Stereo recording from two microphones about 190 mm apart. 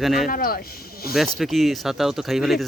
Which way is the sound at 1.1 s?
Centre (ahead or behind).